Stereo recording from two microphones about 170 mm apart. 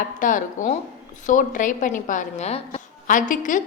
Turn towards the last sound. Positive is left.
turn(degrees=50)  # may be behind; listen again after turning